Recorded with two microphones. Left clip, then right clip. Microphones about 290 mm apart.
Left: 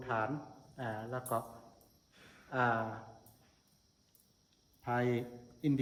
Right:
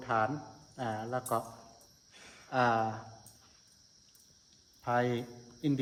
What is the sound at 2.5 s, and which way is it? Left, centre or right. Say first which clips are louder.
Speech: right 4 dB; right.